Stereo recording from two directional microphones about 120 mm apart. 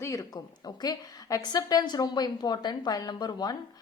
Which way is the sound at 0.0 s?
30° left (ahead or behind).